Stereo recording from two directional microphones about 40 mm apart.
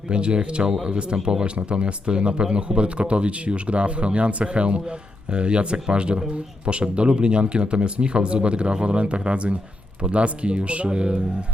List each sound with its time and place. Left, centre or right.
0.1 s speech: right